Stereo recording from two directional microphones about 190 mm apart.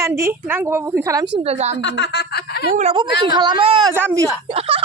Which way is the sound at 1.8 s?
65° left (ahead or behind).